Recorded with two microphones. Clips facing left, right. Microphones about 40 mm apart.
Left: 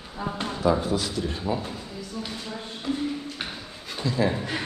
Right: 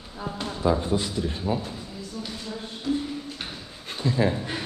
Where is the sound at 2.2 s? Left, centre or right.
Left.